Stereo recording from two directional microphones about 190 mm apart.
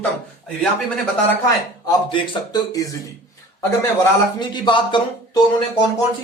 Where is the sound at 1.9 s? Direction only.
25° left (ahead or behind).